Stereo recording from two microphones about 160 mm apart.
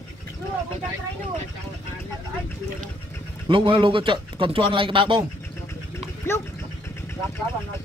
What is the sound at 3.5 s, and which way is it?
Speech, 30° right (ahead or behind).